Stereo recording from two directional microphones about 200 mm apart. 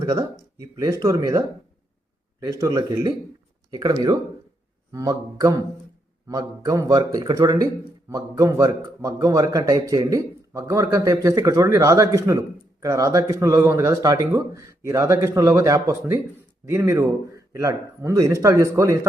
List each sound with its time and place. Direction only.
0.0 s a man's voice: 20° right (ahead or behind)